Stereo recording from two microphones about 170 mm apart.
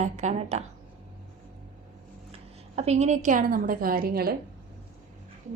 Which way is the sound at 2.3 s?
40° right (ahead or behind).